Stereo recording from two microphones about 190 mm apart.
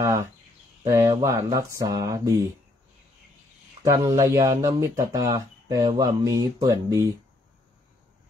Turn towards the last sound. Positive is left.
turn(degrees=-15)  # may be behind; listen again after turning